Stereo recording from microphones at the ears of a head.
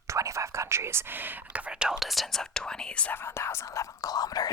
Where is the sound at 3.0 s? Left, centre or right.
Left.